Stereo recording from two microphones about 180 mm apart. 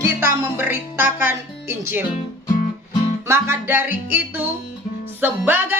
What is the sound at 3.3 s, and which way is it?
Speech, 15° right (ahead or behind).